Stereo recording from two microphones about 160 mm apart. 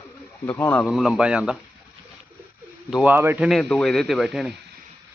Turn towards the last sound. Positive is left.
turn(degrees=0)  # may be behind; listen again after turning